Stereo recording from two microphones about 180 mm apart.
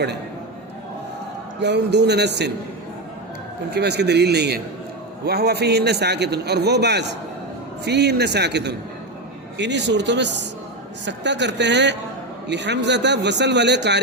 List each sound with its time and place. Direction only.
1.5 s a man's voice: 70° right (ahead or behind)
3.7 s a man's voice: 65° right (ahead or behind)